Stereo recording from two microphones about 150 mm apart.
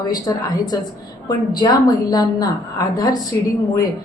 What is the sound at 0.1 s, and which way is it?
A woman's voice, 25° left (ahead or behind).